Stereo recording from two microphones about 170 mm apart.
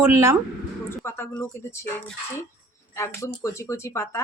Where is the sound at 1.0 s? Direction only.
15° left (ahead or behind).